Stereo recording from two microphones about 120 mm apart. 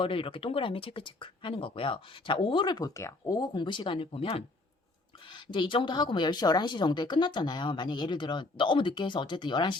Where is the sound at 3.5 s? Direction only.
40° left (ahead or behind).